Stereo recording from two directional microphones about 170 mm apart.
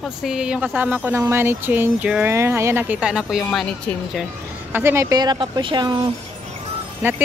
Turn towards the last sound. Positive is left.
turn(degrees=-10)  # may be behind; listen again after turning